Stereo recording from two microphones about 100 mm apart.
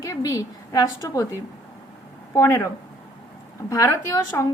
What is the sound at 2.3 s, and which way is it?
Speech, 30° left (ahead or behind).